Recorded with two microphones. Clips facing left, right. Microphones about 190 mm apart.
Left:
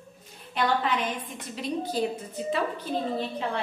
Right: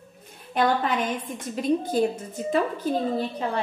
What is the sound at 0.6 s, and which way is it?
A woman's voice, 50° right (ahead or behind).